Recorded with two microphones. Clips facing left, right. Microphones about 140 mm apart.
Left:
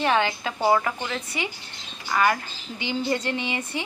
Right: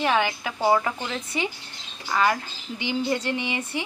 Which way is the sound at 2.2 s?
20° right (ahead or behind).